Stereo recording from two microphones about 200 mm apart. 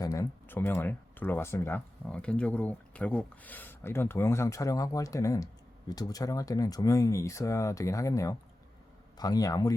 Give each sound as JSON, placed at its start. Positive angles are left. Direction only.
{"t": 0.0, "sound": "a man's voice", "side_deg": 15}